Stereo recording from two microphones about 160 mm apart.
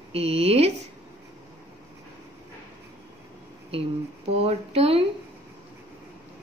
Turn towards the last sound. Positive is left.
turn(degrees=-40)  # may be behind; listen again after turning